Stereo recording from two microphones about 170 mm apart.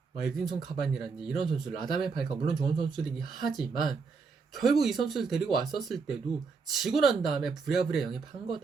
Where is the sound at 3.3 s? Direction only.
Centre (ahead or behind).